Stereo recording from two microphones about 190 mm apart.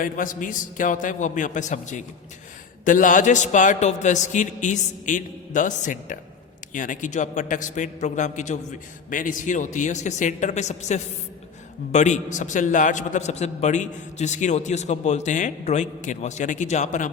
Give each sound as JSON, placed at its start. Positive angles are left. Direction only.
{"t": 0.0, "sound": "a man's voice", "side_deg": 45}